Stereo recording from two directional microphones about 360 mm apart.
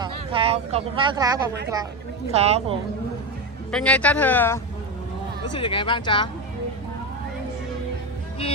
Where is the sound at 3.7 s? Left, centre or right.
Centre.